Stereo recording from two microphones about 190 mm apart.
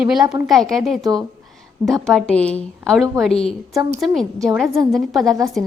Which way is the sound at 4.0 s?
Centre (ahead or behind).